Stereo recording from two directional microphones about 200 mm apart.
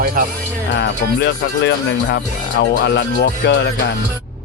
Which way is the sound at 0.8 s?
60° left (ahead or behind).